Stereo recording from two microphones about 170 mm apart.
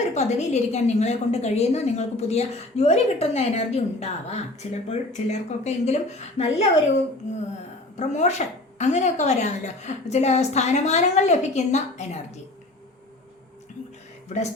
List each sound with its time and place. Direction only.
0.1 s a woman's voice: 40° left (ahead or behind)